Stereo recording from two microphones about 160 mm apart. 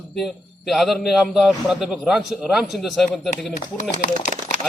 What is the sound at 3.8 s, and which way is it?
Speech, 50° left (ahead or behind).